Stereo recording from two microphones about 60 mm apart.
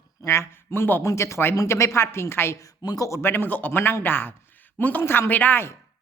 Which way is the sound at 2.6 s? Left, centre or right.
Left.